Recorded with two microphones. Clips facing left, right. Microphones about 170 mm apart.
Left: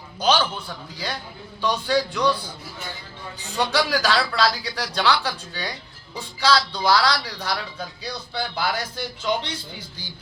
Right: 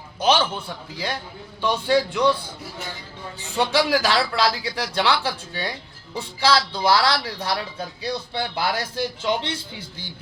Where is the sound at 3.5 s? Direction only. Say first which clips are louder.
Right 2 dB; 25° right (ahead or behind).